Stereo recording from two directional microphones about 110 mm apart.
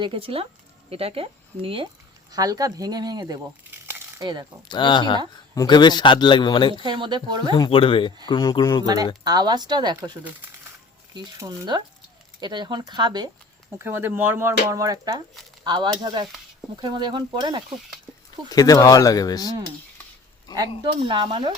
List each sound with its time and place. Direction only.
0.0 s speech: 55° right (ahead or behind)
2.3 s speech: 35° right (ahead or behind)
4.7 s speech: 45° left (ahead or behind)
6.8 s speech: 45° right (ahead or behind)
7.5 s speech: 50° left (ahead or behind)
8.3 s speech: 40° left (ahead or behind)
9.2 s speech: 40° right (ahead or behind)
11.1 s speech: 40° right (ahead or behind)
13.7 s speech: 20° right (ahead or behind); by 17.6 s 45° right (ahead or behind)
18.4 s speech: 35° left (ahead or behind)
20.5 s a sound: 35° left (ahead or behind)
20.8 s speech: 45° right (ahead or behind)